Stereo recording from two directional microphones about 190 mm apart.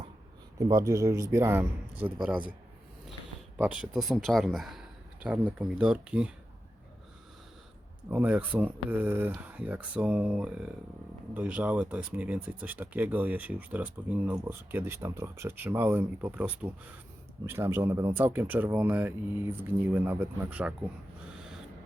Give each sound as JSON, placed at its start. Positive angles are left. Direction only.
{"t": 0.6, "sound": "speech", "side_deg": -20}
{"t": 3.6, "sound": "a man's voice", "side_deg": -5}
{"t": 8.1, "sound": "speech", "side_deg": -10}